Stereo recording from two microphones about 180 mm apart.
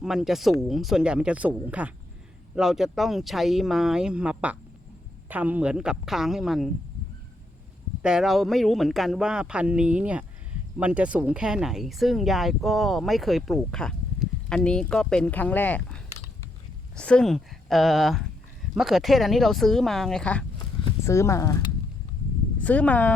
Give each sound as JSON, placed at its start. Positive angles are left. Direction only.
{"t": 0.0, "sound": "speech", "side_deg": 0}
{"t": 8.0, "sound": "speech", "side_deg": 0}
{"t": 21.0, "sound": "speech", "side_deg": 15}